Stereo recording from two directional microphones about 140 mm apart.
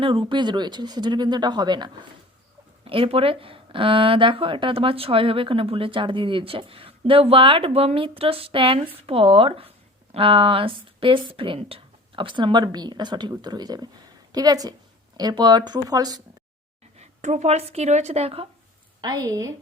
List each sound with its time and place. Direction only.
0.0 s speech: 35° right (ahead or behind)
17.0 s speech: 60° right (ahead or behind)
19.0 s speech: 25° right (ahead or behind)